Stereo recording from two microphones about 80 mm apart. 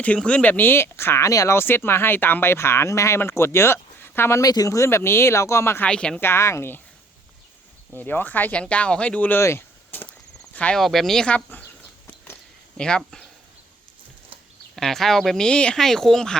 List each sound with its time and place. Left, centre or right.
0.0 s speech: centre; by 1.3 s left
1.3 s speech: left
1.5 s speech: left
4.4 s speech: left
5.8 s speech: centre
6.1 s speech: left
7.9 s speech: left
9.4 s a sound: left
10.5 s speech: centre
10.8 s speech: centre
11.3 s speech: centre
12.7 s speech: centre
14.8 s speech: centre